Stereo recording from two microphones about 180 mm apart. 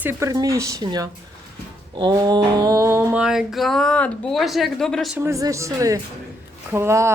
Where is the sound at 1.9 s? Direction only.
25° right (ahead or behind); by 5.2 s centre (ahead or behind).